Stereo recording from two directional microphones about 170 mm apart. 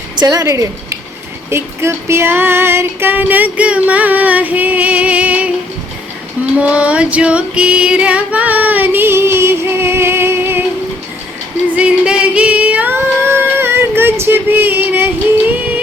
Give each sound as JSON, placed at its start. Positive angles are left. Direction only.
{"t": 0.2, "sound": "speech", "side_deg": -20}
{"t": 1.5, "sound": "female singing", "side_deg": -15}
{"t": 6.6, "sound": "female singing", "side_deg": -5}
{"t": 11.7, "sound": "singing", "side_deg": -5}